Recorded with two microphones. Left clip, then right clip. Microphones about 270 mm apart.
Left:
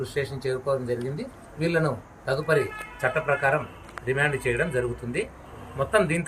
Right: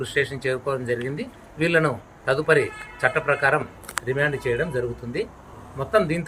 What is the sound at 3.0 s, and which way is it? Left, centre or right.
A man's voice, centre.